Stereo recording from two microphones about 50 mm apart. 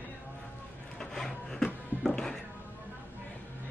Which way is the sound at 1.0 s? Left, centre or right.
Centre.